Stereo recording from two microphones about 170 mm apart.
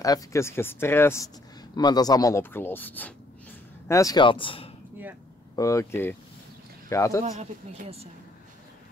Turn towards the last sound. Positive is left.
turn(degrees=20)  # may be behind; listen again after turning